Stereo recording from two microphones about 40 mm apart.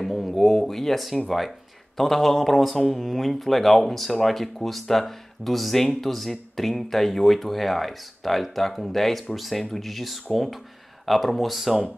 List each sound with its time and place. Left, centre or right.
0.0 s speech: centre